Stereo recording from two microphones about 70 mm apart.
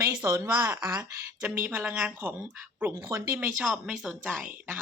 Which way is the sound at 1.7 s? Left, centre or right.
Right.